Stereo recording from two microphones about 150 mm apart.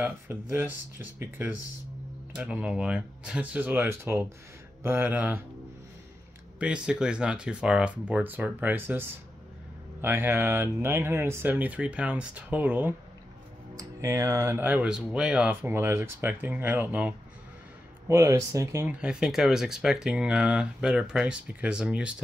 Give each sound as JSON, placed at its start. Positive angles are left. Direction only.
{"t": 0.0, "sound": "speech", "side_deg": -15}
{"t": 6.6, "sound": "speech", "side_deg": -5}
{"t": 10.0, "sound": "speech", "side_deg": -15}
{"t": 18.9, "sound": "speech", "side_deg": -5}